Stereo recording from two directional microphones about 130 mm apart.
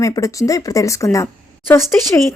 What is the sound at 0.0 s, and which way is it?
Speech, 25° left (ahead or behind).